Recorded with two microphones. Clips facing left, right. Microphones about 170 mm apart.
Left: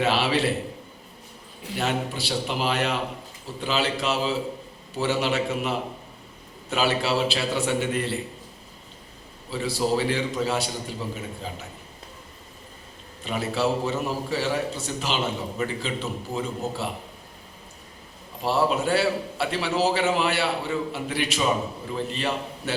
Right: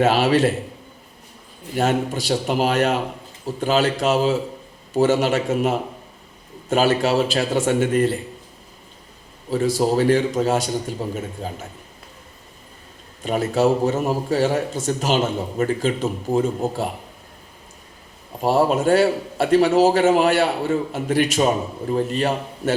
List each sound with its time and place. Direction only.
0.0 s a man's voice: 45° right (ahead or behind)
1.7 s a man's voice: 45° right (ahead or behind)
9.5 s a man's voice: 45° right (ahead or behind)
13.2 s a man's voice: 45° right (ahead or behind)
18.4 s a man's voice: 45° right (ahead or behind)